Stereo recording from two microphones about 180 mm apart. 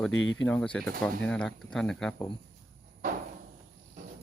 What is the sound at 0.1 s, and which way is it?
Speech, 90° left.